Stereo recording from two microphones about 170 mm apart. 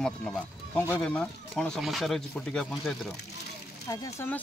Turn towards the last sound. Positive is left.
turn(degrees=15)  # may be behind; listen again after turning